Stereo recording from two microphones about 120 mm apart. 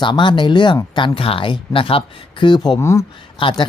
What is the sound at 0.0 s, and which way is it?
Speech, 40° left (ahead or behind).